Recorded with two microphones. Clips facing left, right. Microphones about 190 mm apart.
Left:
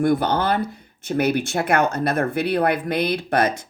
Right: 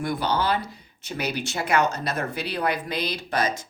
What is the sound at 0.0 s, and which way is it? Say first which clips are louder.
Speech: left 6 dB; 50° left (ahead or behind).